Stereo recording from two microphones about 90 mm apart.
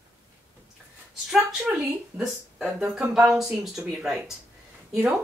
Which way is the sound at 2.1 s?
10° right (ahead or behind).